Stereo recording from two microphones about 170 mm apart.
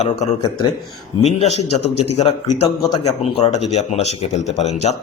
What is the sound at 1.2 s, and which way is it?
Speech, 40° left (ahead or behind).